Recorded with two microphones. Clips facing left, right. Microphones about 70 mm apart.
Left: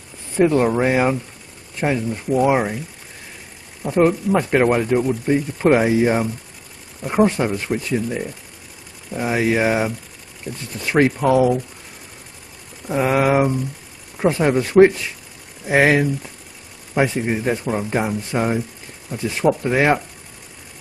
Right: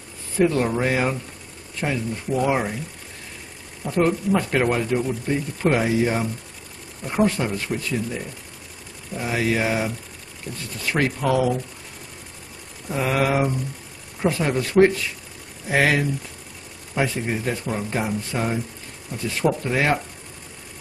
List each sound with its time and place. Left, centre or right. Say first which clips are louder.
0.4 s speech: left 4 dB; left
3.8 s speech: left 4 dB; centre
10.5 s speech: left 4 dB; centre
10.8 s speech: left 6 dB; left
12.8 s speech: left 5 dB; left